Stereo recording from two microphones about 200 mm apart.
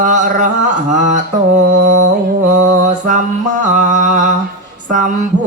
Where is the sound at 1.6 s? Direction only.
40° right (ahead or behind).